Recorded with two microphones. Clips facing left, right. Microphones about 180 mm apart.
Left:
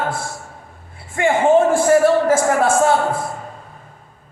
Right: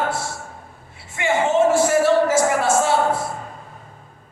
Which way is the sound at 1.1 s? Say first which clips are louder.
Left 4 dB; 50° left (ahead or behind).